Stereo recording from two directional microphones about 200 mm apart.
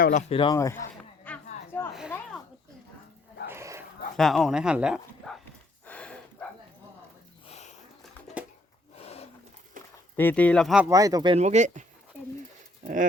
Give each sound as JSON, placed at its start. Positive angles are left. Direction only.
{"t": 0.0, "sound": "speech", "side_deg": 35}
{"t": 1.9, "sound": "a sound", "side_deg": 0}
{"t": 3.5, "sound": "dog", "side_deg": -15}
{"t": 4.2, "sound": "speech", "side_deg": 0}
{"t": 5.8, "sound": "a sound", "side_deg": 5}
{"t": 7.4, "sound": "sniff", "side_deg": 35}
{"t": 9.0, "sound": "wild animals", "side_deg": 30}
{"t": 9.8, "sound": "a sound", "side_deg": -40}
{"t": 10.2, "sound": "speech", "side_deg": 10}
{"t": 10.8, "sound": "speech", "side_deg": -15}
{"t": 11.3, "sound": "speech", "side_deg": -35}